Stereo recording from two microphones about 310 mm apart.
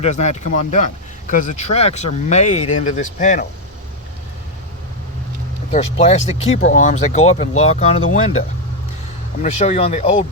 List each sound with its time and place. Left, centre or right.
0.0 s speech: left
5.7 s speech: left